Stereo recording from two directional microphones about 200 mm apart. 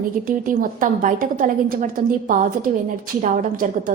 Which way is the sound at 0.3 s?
45° right (ahead or behind).